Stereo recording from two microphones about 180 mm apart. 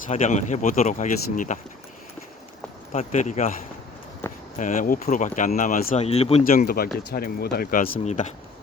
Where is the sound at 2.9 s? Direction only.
40° left (ahead or behind).